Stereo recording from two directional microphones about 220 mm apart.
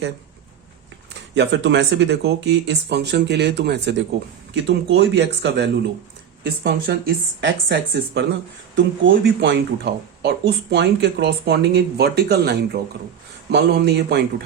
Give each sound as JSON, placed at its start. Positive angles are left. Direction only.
{"t": 1.4, "sound": "speech", "side_deg": -55}